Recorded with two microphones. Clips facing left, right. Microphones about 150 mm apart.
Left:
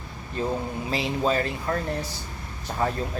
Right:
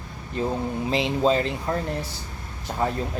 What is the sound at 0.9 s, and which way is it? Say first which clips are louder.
Speech: right 4 dB; 20° right (ahead or behind).